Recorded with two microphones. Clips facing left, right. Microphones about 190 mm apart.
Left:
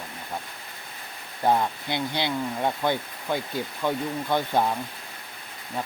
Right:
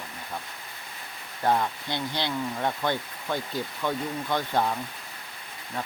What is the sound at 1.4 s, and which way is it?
Speech, 15° left (ahead or behind).